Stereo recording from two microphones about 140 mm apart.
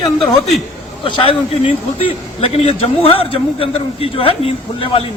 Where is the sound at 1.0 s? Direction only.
40° left (ahead or behind).